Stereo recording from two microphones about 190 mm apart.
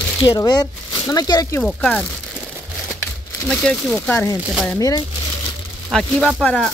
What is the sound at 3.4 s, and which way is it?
Speech, 5° left (ahead or behind).